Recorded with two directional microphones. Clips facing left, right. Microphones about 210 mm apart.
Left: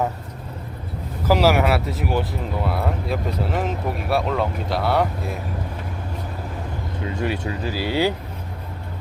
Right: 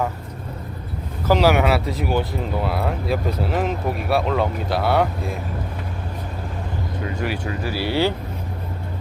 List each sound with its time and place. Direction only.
1.3 s speech: 5° left (ahead or behind)
7.2 s speech: 25° left (ahead or behind)